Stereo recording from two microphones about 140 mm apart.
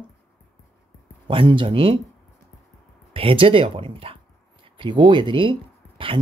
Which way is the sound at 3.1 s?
40° right (ahead or behind).